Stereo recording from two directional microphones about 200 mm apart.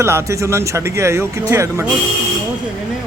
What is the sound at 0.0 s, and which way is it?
Speech, 15° right (ahead or behind).